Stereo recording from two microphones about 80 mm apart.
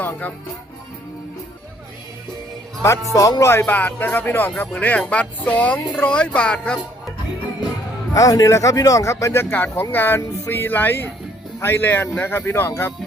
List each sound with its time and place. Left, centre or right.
0.0 s music: left
3.1 s speech: left
3.7 s speech: centre
8.1 s speech: left